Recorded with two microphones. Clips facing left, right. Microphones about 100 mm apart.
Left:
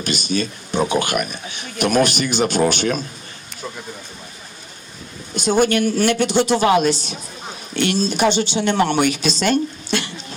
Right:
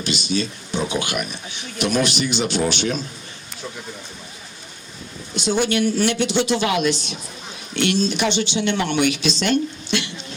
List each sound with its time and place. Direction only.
0.0 s speech: 45° left (ahead or behind)
5.3 s speech: 45° left (ahead or behind)